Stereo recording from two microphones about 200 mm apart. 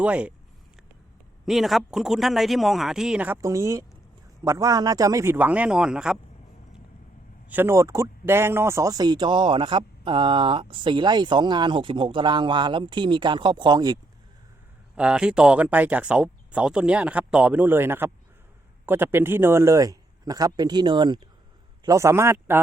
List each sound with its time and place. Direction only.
0.0 s a man's voice: 5° right (ahead or behind)
1.5 s a man's voice: centre (ahead or behind)
7.5 s speech: 10° right (ahead or behind)
14.9 s a man's voice: 5° right (ahead or behind)